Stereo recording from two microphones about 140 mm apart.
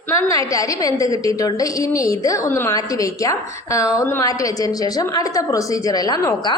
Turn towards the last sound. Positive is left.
turn(degrees=30)  # may be behind; listen again after turning